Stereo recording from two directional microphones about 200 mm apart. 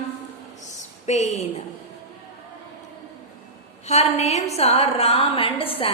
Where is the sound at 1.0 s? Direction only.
35° left (ahead or behind).